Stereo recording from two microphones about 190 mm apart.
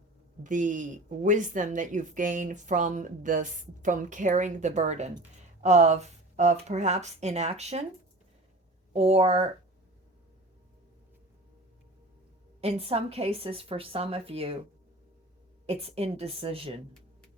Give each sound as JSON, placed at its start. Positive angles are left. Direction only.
{"t": 0.4, "sound": "speech", "side_deg": -40}
{"t": 8.9, "sound": "speech", "side_deg": -30}
{"t": 12.6, "sound": "speech", "side_deg": -30}
{"t": 15.6, "sound": "speech", "side_deg": -30}